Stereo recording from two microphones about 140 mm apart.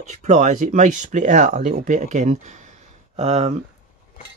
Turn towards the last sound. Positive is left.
turn(degrees=-55)  # may be behind; listen again after turning